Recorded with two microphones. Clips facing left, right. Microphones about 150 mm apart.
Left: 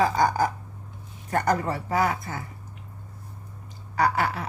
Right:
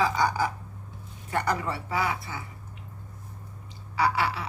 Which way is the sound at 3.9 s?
45° left (ahead or behind).